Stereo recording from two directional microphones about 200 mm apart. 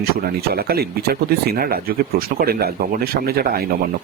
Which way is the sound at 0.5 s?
50° right (ahead or behind).